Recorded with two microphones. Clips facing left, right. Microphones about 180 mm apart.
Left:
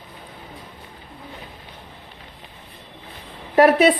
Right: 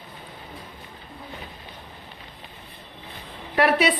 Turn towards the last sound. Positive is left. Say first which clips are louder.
# left 6 dB
turn(degrees=45)  # may be behind; listen again after turning